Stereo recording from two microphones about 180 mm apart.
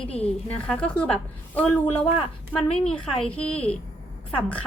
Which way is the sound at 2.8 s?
5° left (ahead or behind).